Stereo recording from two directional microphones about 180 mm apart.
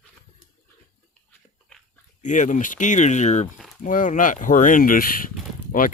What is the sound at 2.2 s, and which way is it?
Speech, 45° left (ahead or behind).